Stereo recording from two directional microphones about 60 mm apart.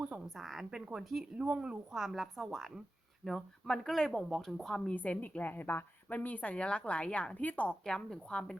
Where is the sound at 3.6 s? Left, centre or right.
Centre.